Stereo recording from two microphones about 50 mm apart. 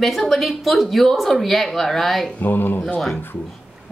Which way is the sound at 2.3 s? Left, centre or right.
Left.